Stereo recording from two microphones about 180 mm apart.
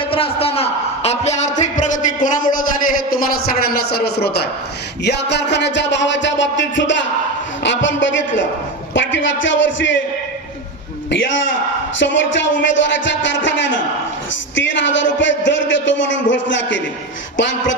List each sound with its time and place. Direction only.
0.1 s a man's voice: 30° left (ahead or behind); by 4.4 s 65° left (ahead or behind)
5.0 s music: 70° left (ahead or behind); by 7.0 s 90° left
7.6 s a man's voice: 90° left
11.9 s a man's voice: 90° left